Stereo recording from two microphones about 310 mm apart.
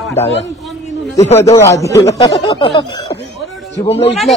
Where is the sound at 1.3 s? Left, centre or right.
Centre.